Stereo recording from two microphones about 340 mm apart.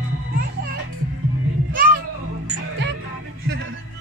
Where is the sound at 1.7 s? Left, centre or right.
Right.